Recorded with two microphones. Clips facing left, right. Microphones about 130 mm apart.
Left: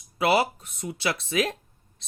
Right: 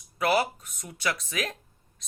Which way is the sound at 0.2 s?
30° left (ahead or behind).